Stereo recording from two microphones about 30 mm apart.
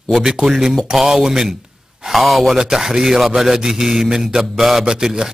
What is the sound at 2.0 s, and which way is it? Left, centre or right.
Mantra, centre.